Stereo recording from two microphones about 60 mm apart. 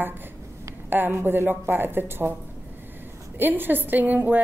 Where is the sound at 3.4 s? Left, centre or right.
Right.